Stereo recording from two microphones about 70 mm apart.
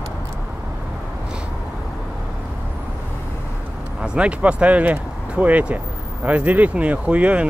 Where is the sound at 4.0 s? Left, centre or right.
Centre.